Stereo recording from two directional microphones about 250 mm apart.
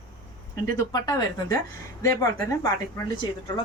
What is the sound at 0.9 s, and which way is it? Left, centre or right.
A woman's voice, centre.